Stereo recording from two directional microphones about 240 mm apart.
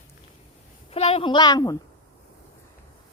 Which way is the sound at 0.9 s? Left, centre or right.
Left.